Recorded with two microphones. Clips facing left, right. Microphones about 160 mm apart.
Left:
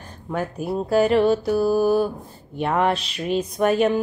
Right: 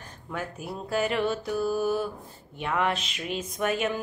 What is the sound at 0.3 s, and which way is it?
Speech, 40° left (ahead or behind).